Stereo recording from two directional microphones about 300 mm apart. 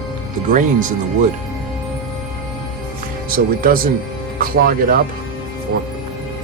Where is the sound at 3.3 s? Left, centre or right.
Right.